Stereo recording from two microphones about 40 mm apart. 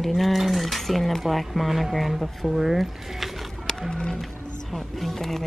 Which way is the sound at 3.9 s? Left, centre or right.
Centre.